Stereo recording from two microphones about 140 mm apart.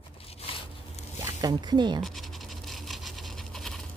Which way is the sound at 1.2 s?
30° right (ahead or behind).